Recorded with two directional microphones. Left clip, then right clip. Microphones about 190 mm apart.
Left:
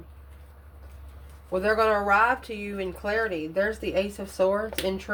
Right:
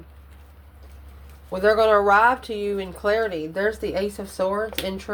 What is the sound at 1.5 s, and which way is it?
A woman's voice, 30° right (ahead or behind).